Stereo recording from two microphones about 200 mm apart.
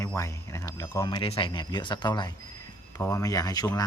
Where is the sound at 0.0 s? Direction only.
15° left (ahead or behind).